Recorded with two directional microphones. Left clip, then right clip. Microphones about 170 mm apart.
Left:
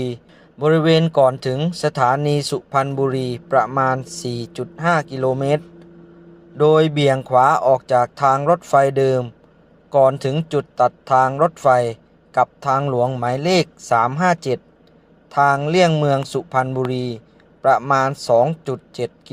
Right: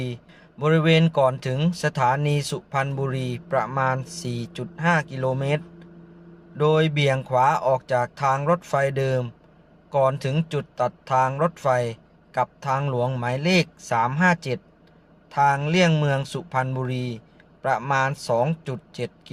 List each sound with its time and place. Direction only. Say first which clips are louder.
0.6 s speech: left 5 dB; 15° left (ahead or behind)